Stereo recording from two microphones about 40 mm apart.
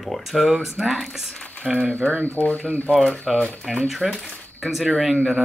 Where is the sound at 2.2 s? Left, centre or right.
Left.